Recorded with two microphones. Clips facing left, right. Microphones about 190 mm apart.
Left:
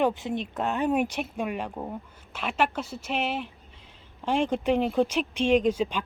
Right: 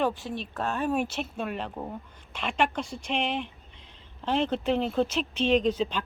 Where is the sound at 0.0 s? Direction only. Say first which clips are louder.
Left 3 dB; 20° left (ahead or behind).